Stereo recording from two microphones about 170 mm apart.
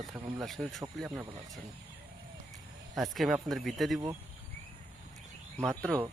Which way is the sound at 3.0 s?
Centre (ahead or behind).